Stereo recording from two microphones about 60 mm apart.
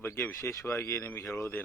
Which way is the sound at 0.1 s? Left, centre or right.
Left.